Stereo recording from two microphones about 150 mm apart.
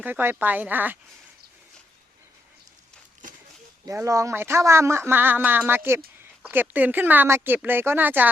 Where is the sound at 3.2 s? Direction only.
60° right (ahead or behind).